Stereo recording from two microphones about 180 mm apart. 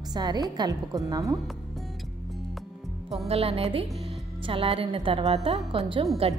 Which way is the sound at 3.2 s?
35° right (ahead or behind).